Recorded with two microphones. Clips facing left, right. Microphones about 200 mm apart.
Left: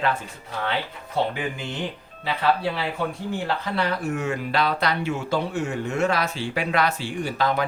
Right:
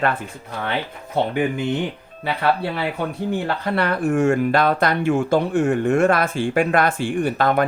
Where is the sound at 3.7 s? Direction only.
55° right (ahead or behind).